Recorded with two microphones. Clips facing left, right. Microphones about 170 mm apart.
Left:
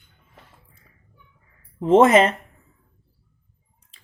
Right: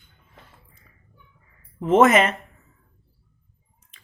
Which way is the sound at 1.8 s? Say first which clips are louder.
Left 2 dB; 30° left (ahead or behind).